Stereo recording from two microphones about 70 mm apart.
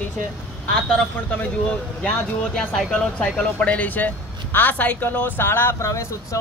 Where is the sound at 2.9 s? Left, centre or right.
Centre.